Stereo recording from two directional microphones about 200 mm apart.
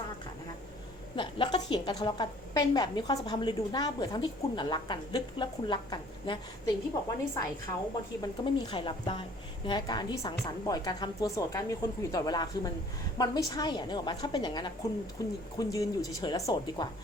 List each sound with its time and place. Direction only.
1.1 s speech: 25° left (ahead or behind)
8.2 s speech: 20° left (ahead or behind)